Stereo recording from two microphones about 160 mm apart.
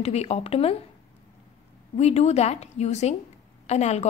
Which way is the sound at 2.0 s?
40° left (ahead or behind).